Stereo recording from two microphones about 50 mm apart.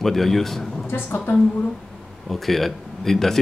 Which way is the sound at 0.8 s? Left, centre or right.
Left.